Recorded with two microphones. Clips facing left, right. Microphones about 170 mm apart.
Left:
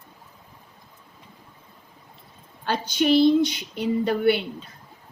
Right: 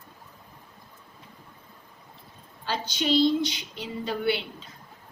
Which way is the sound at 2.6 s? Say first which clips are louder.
Left 6 dB; 55° left (ahead or behind).